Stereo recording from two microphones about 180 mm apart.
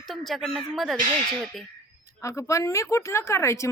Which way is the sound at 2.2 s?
15° left (ahead or behind).